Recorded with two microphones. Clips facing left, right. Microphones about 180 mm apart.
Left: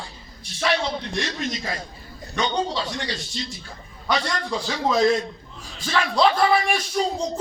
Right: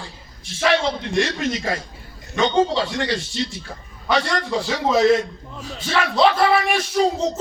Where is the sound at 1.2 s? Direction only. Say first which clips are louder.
Right 5 dB; 75° right (ahead or behind).